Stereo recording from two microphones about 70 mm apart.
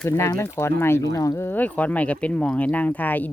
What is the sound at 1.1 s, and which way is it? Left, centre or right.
Speech, left.